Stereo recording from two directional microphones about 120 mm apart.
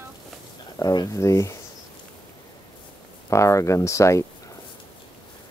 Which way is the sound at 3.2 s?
25° left (ahead or behind).